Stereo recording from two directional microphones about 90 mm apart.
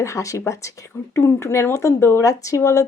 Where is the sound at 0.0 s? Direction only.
35° left (ahead or behind).